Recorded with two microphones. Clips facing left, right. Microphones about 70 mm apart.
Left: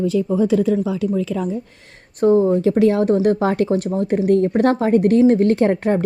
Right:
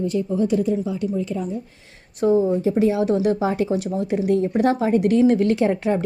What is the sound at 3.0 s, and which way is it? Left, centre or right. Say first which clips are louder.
Speech: left 3 dB; left.